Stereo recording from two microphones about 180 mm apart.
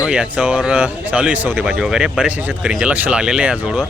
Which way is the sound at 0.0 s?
5° right (ahead or behind).